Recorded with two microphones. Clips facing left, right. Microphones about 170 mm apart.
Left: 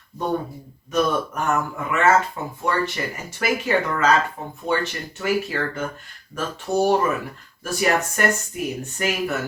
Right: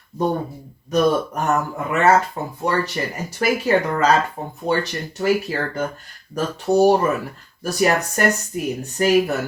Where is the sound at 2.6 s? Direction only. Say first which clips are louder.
Right 2 dB; 35° right (ahead or behind).